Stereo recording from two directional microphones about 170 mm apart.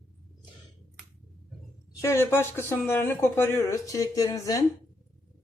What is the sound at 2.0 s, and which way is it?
Speech, 15° left (ahead or behind).